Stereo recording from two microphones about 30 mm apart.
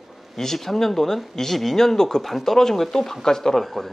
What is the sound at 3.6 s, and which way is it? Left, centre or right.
Speech, centre.